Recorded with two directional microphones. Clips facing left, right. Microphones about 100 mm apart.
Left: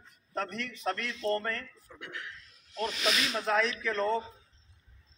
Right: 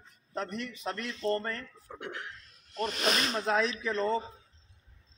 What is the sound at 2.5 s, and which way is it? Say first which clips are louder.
Speech: even; 50° right (ahead or behind).